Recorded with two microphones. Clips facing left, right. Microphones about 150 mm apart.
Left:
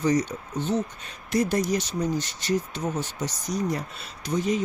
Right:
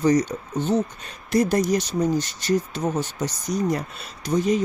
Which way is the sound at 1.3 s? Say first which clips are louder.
Right 4 dB; 40° right (ahead or behind).